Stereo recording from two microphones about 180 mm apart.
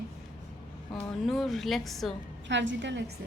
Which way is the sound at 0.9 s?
Centre (ahead or behind).